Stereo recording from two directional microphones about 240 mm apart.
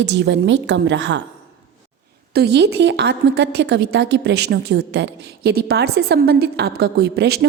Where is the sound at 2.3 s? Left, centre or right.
Right.